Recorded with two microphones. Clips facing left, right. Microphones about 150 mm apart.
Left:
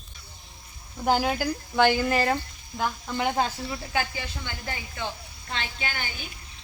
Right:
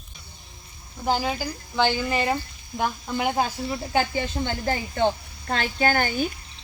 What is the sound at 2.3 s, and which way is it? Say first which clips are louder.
Speech: right 1 dB; 15° right (ahead or behind).